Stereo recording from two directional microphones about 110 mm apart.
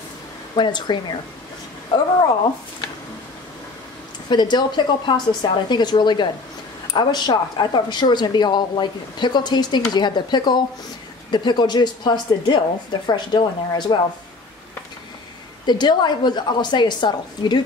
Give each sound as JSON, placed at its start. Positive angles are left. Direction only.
{"t": 0.6, "sound": "a woman's voice", "side_deg": 45}
{"t": 4.3, "sound": "a woman's voice", "side_deg": 40}
{"t": 15.6, "sound": "a woman's voice", "side_deg": 40}